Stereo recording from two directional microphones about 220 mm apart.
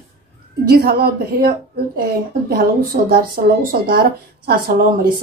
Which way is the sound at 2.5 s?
40° right (ahead or behind).